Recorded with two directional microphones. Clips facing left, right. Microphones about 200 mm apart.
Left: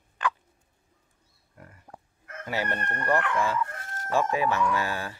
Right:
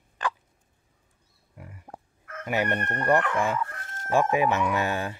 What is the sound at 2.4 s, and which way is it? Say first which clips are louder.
Chicken: right 4 dB; 15° right (ahead or behind).